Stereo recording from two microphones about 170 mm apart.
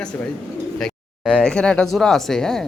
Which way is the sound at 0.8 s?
5° left (ahead or behind).